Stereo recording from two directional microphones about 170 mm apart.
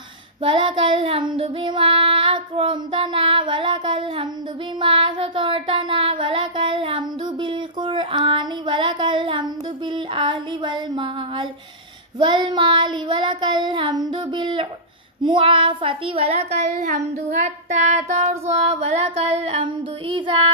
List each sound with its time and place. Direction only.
0.4 s child singing: 30° right (ahead or behind)
10.1 s a sound: 25° right (ahead or behind)
12.2 s child singing: 25° right (ahead or behind)